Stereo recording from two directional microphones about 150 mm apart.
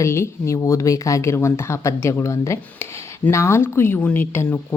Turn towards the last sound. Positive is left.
turn(degrees=15)  # may be behind; listen again after turning